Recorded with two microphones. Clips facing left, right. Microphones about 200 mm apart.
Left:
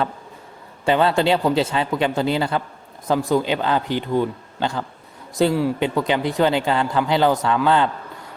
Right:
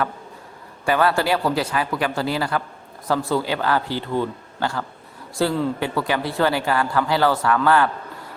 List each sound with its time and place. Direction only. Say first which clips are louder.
0.9 s speech: left 2 dB; 20° left (ahead or behind)